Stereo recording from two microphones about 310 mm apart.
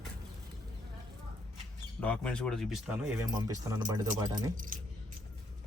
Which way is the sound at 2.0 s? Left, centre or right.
Centre.